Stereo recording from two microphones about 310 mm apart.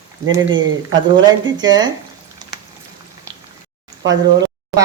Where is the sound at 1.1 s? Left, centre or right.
Centre.